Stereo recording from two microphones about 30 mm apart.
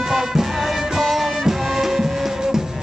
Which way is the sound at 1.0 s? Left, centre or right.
Centre.